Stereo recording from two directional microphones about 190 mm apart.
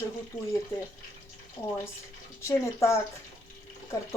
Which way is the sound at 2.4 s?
15° left (ahead or behind).